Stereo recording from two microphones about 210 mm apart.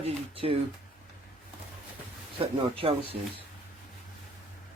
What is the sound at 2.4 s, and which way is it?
Speech, 25° right (ahead or behind).